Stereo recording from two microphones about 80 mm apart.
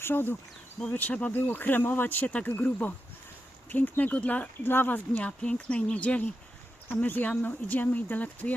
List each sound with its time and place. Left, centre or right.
0.0 s speech: left
0.8 s speech: centre
5.2 s speech: centre